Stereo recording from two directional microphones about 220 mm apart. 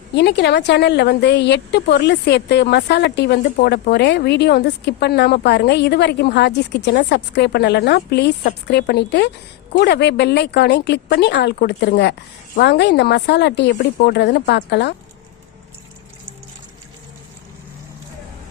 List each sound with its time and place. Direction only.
0.1 s speech: 50° left (ahead or behind)